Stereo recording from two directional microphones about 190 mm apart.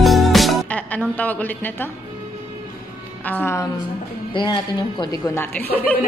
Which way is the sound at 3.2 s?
10° left (ahead or behind).